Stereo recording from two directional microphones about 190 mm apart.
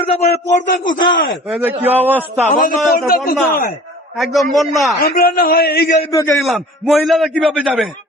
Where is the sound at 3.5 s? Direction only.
50° left (ahead or behind).